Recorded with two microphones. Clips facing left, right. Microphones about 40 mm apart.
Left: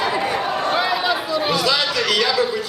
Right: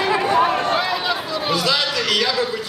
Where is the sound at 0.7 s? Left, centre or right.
Centre.